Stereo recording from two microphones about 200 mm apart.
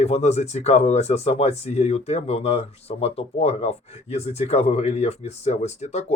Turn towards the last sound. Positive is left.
turn(degrees=35)  # may be behind; listen again after turning